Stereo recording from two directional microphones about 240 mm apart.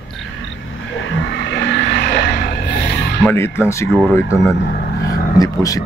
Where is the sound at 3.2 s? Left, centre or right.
Centre.